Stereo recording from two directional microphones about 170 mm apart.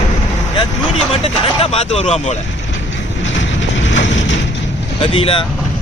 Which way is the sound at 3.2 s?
90° left.